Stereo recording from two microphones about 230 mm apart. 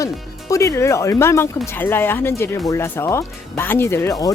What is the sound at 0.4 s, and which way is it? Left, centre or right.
Speech, centre.